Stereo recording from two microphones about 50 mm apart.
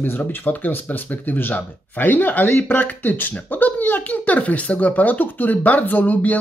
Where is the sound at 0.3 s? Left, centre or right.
Left.